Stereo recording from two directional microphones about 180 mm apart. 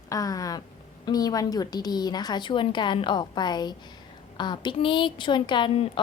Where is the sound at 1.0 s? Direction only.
20° left (ahead or behind).